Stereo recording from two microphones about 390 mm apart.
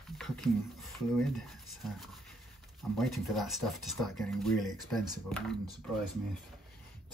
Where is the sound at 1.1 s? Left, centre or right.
Centre.